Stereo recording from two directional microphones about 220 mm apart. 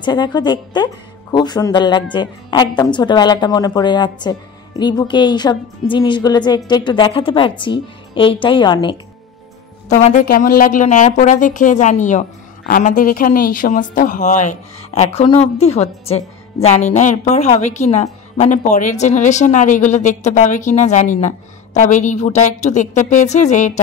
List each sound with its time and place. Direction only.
0.0 s a woman's voice: 20° left (ahead or behind)
9.9 s a woman's voice: 35° left (ahead or behind)